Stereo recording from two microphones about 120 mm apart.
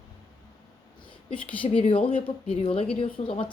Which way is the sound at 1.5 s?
45° left (ahead or behind).